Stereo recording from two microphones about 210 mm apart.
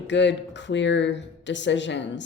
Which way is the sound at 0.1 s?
60° left (ahead or behind).